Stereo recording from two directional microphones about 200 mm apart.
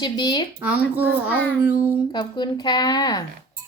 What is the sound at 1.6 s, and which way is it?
Speech, 5° right (ahead or behind).